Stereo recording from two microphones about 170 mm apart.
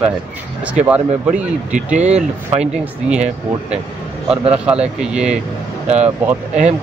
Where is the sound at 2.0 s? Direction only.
40° right (ahead or behind).